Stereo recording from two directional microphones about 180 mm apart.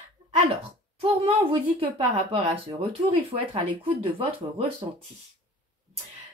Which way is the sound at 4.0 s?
30° right (ahead or behind).